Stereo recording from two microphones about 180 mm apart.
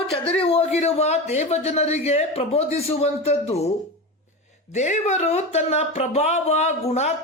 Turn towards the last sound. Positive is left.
turn(degrees=35)  # may be behind; listen again after turning